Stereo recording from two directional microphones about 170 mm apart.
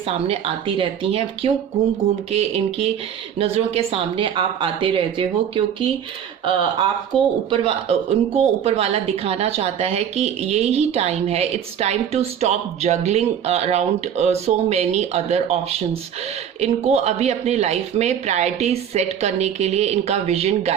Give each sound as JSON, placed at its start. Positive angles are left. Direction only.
{"t": 0.0, "sound": "a woman's voice", "side_deg": -35}
{"t": 7.1, "sound": "speech", "side_deg": 5}
{"t": 7.5, "sound": "a woman's voice", "side_deg": -30}